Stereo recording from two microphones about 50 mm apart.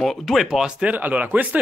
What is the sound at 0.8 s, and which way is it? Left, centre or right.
Speech, right.